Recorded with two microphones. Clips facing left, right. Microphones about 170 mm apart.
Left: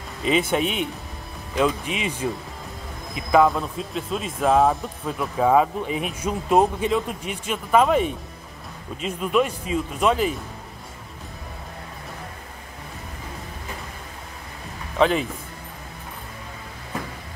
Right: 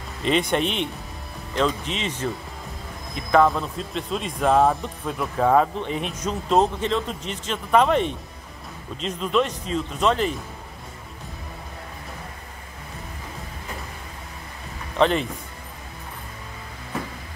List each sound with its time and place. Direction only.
0.2 s speech: 5° left (ahead or behind)
15.0 s speech: 5° left (ahead or behind)